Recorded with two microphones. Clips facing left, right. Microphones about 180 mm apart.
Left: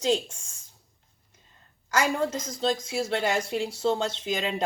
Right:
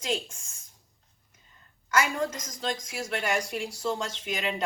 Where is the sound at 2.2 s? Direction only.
30° left (ahead or behind).